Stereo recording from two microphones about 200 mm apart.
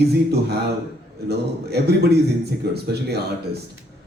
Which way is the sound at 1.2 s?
55° right (ahead or behind).